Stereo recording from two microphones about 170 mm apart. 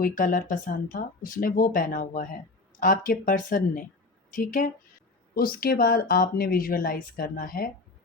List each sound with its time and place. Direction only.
0.0 s speech: 55° left (ahead or behind)